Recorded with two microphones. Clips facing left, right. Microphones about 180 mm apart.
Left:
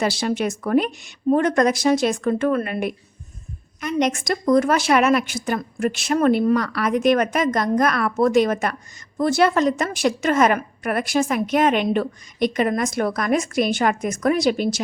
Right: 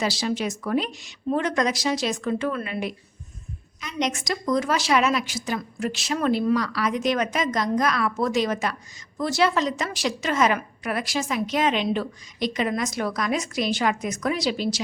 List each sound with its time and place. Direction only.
0.0 s a woman's voice: 55° left (ahead or behind)